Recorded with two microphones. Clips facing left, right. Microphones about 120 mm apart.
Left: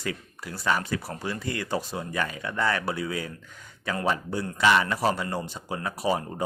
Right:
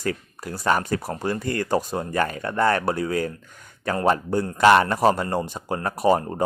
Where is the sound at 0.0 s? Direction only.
45° right (ahead or behind).